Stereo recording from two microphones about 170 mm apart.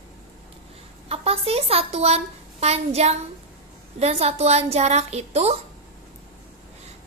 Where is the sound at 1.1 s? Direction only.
35° right (ahead or behind).